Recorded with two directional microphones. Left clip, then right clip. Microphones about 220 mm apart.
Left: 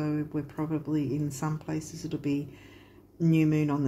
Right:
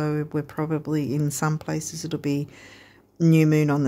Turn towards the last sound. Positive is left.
turn(degrees=-50)  # may be behind; listen again after turning